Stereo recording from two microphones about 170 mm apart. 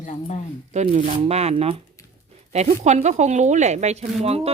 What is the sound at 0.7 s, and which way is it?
A woman's voice, 45° right (ahead or behind).